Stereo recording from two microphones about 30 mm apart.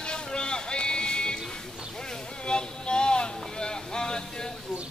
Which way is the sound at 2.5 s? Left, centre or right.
Left.